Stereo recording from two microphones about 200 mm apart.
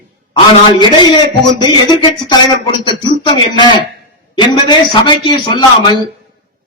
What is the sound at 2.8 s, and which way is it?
A man's voice, 20° left (ahead or behind).